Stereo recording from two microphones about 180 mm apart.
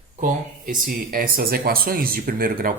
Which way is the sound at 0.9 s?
50° right (ahead or behind).